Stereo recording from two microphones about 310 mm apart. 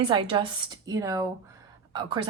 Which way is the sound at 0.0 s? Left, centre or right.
Centre.